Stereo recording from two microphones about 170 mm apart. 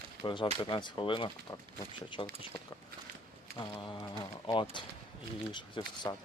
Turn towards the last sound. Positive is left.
turn(degrees=25)  # may be behind; listen again after turning